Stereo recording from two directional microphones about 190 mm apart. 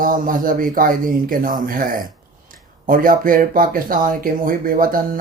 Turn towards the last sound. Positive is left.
turn(degrees=-50)  # may be behind; listen again after turning